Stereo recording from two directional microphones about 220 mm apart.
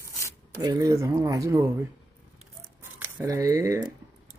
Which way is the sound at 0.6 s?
15° right (ahead or behind).